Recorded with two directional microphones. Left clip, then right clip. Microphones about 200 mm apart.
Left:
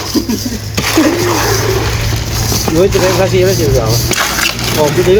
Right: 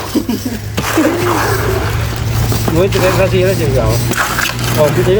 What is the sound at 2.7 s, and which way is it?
Speech, centre (ahead or behind).